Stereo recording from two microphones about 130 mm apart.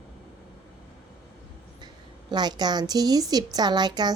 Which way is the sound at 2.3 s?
35° right (ahead or behind).